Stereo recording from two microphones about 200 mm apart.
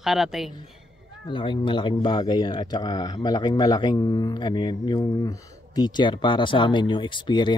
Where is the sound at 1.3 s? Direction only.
25° left (ahead or behind).